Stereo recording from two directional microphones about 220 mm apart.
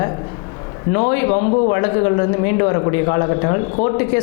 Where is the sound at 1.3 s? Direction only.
25° left (ahead or behind).